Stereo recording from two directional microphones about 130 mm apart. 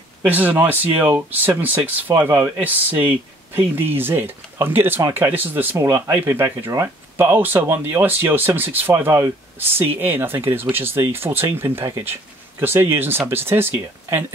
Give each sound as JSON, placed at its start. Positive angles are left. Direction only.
{"t": 0.2, "sound": "speech", "side_deg": -15}